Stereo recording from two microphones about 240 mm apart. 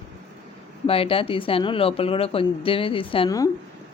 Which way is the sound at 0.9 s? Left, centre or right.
Left.